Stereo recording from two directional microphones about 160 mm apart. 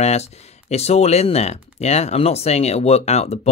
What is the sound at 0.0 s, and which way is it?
Speech, 40° left (ahead or behind).